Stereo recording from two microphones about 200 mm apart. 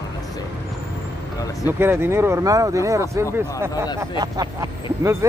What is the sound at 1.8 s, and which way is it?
Speech, 10° right (ahead or behind).